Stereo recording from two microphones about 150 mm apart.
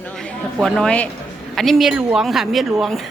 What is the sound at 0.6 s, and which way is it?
A woman's voice, 5° left (ahead or behind).